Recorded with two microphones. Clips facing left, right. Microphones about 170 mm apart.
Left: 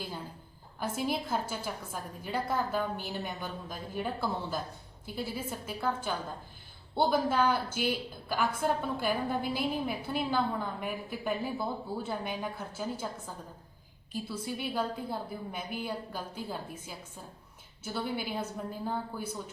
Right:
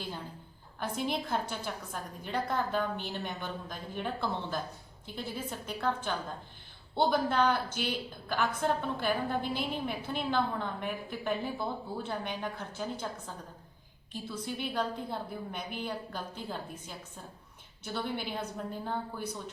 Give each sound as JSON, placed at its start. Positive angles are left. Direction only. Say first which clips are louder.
{"t": 0.8, "sound": "a woman's voice", "louder": "left 1 dB", "side_deg": 5}